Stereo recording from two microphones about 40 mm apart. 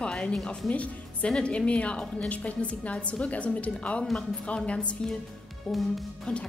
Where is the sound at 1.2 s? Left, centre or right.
Left.